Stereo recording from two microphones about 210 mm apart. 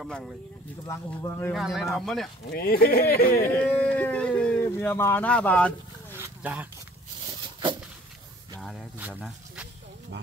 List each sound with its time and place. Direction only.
0.0 s speech: centre (ahead or behind)
0.8 s speech: 15° left (ahead or behind)
1.5 s speech: centre (ahead or behind)
2.5 s speech: 45° left (ahead or behind)
3.4 s speech: 5° left (ahead or behind)
6.1 s a sound: 10° right (ahead or behind)
8.5 s a sound: centre (ahead or behind)
9.1 s speech: centre (ahead or behind)